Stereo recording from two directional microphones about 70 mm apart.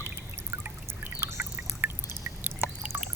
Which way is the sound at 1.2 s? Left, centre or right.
Right.